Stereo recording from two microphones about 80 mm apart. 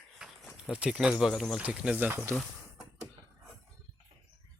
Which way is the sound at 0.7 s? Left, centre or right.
Centre.